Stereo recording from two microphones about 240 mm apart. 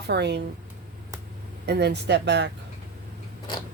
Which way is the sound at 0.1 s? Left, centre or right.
Right.